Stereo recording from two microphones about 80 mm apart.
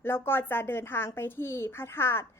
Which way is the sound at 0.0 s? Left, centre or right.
Left.